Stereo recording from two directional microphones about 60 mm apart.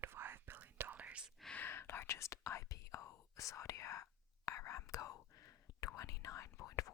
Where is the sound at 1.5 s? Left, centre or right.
Left.